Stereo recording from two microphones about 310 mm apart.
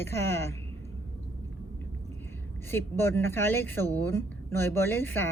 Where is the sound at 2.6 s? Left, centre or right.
Centre.